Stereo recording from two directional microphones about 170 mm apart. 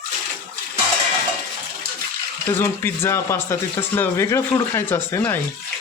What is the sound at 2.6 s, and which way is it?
Speech, 15° left (ahead or behind).